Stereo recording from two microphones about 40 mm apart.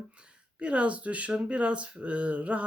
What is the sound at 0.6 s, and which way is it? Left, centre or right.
Speech, right.